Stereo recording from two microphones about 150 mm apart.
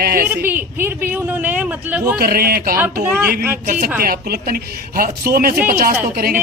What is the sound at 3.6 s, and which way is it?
A woman's voice, 70° right (ahead or behind).